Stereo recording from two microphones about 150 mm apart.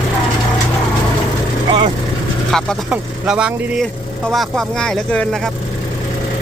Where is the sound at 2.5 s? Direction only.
5° left (ahead or behind).